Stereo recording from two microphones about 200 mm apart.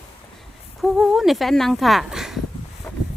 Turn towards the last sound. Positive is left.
turn(degrees=10)  # may be behind; listen again after turning